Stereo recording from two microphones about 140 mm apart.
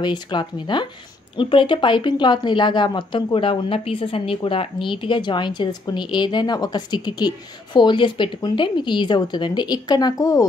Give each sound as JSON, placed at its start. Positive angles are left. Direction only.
{"t": 0.0, "sound": "a woman's voice", "side_deg": 30}